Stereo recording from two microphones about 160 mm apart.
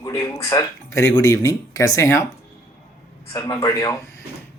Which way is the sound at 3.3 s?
25° left (ahead or behind).